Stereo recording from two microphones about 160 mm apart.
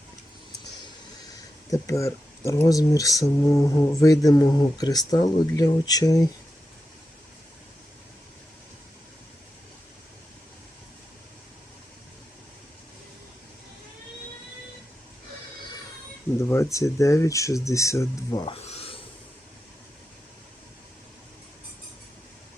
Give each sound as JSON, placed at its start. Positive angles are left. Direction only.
{"t": 1.7, "sound": "speech", "side_deg": 20}
{"t": 16.5, "sound": "speech", "side_deg": 20}
{"t": 18.5, "sound": "filing", "side_deg": 40}